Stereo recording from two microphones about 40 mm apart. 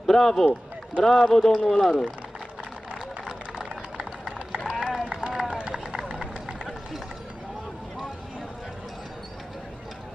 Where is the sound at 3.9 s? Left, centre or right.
Right.